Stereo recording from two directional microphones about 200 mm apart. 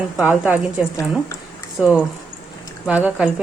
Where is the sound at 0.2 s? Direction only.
10° right (ahead or behind).